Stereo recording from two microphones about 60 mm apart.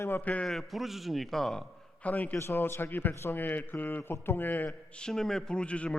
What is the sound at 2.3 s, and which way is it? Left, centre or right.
A man's voice, left.